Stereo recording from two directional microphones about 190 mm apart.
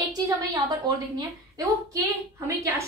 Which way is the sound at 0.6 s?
20° right (ahead or behind).